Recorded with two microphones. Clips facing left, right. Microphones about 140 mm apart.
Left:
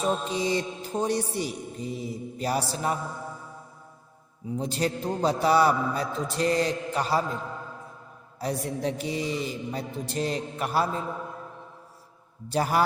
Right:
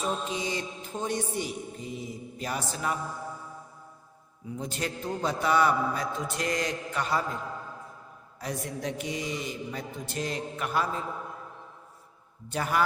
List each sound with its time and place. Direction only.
0.0 s mantra: 35° left (ahead or behind)
4.5 s mantra: 35° left (ahead or behind)
8.4 s mantra: 35° left (ahead or behind)
12.5 s mantra: 35° left (ahead or behind)